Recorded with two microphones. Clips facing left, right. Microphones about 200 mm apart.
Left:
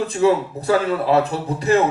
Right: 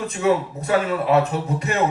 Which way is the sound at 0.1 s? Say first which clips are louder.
Left 1 dB; 30° left (ahead or behind).